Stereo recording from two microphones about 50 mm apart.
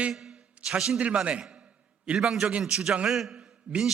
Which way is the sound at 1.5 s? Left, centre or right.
Right.